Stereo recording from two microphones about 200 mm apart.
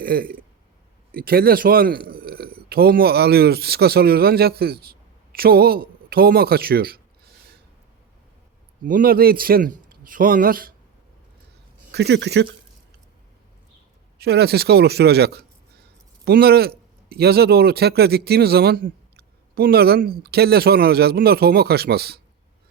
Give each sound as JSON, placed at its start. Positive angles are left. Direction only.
{"t": 0.0, "sound": "a man's voice", "side_deg": -45}
{"t": 8.8, "sound": "speech", "side_deg": -45}
{"t": 11.9, "sound": "speech", "side_deg": -55}
{"t": 14.2, "sound": "speech", "side_deg": -55}